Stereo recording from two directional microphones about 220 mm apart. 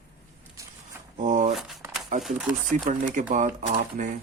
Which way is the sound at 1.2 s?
35° right (ahead or behind).